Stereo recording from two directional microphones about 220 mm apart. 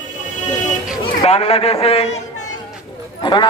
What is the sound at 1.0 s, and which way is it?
A man's voice, 25° left (ahead or behind).